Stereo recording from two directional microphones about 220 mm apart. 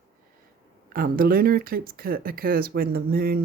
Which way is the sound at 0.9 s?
40° right (ahead or behind).